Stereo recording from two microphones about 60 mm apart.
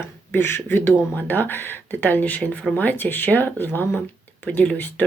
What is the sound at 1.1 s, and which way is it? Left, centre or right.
Speech, left.